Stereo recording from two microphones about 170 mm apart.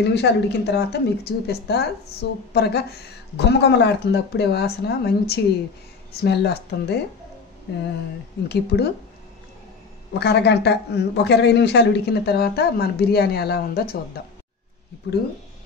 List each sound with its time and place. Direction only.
0.0 s a woman's voice: 85° left
8.5 s a woman's voice: 70° left (ahead or behind)
10.1 s a woman's voice: 80° left